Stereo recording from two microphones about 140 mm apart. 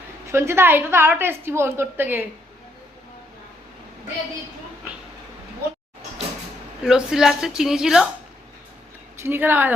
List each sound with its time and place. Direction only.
0.3 s a woman's voice: 20° right (ahead or behind)
6.8 s a woman's voice: 5° right (ahead or behind)
9.2 s a woman's voice: 15° right (ahead or behind)